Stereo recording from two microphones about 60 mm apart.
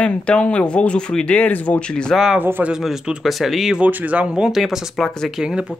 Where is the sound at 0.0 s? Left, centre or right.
Centre.